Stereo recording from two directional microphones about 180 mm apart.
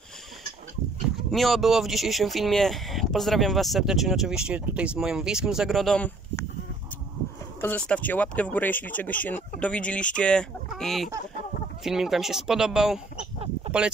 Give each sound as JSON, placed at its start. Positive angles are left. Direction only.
{"t": 1.3, "sound": "speech", "side_deg": 0}
{"t": 7.6, "sound": "speech", "side_deg": 10}
{"t": 10.1, "sound": "fowl", "side_deg": 5}
{"t": 11.8, "sound": "speech", "side_deg": 0}
{"t": 13.7, "sound": "a sound", "side_deg": -35}